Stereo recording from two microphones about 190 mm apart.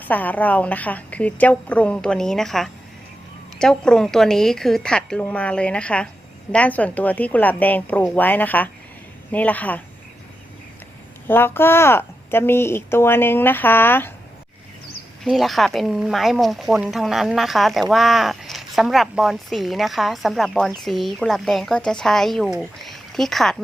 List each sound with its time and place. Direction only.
0.1 s a woman's voice: 10° left (ahead or behind)
11.3 s a woman's voice: 10° left (ahead or behind)
15.2 s speech: centre (ahead or behind)